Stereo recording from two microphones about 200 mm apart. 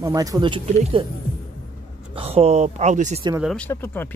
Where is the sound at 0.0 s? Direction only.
15° right (ahead or behind).